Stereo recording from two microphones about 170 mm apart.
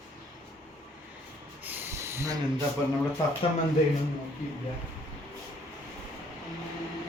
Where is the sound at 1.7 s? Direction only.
15° right (ahead or behind).